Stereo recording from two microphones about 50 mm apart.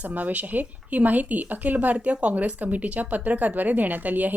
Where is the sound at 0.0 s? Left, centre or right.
Right.